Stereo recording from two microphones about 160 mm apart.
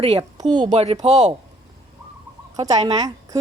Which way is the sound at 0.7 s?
45° right (ahead or behind).